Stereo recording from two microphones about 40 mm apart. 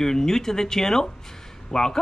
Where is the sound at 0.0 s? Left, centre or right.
Centre.